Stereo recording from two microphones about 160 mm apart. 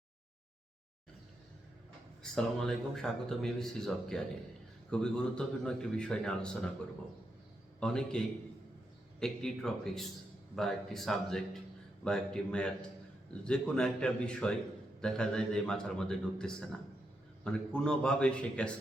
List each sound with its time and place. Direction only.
2.2 s speech: 5° left (ahead or behind)
7.8 s speech: 5° left (ahead or behind)
9.2 s a man's voice: centre (ahead or behind)